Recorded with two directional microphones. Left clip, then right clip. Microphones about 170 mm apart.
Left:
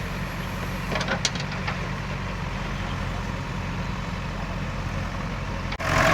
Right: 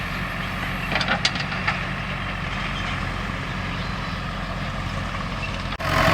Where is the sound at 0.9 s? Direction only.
75° left (ahead or behind).